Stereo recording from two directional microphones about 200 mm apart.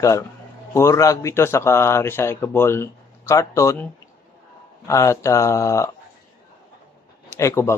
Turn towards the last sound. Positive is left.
turn(degrees=15)  # may be behind; listen again after turning